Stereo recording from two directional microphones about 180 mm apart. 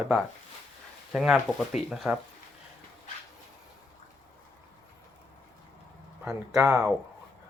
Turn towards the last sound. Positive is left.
turn(degrees=-15)  # may be behind; listen again after turning